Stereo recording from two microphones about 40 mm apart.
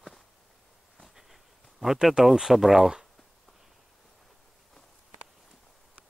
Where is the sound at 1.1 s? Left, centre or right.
Centre.